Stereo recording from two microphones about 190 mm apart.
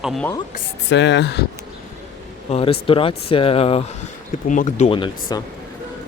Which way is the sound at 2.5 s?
30° left (ahead or behind).